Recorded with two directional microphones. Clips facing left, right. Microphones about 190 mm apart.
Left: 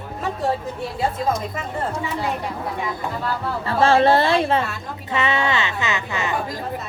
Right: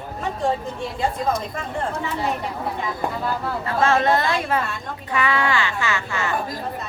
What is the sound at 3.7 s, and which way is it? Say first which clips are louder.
A woman's voice: left 3 dB; 30° left (ahead or behind).